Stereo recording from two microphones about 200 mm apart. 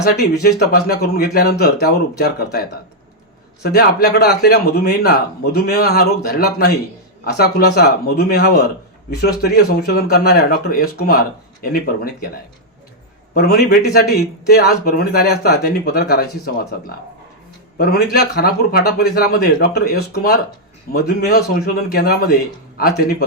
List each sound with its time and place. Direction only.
0.4 s a man's voice: 50° left (ahead or behind)
13.3 s a man's voice: 50° left (ahead or behind)
17.7 s a man's voice: 50° left (ahead or behind)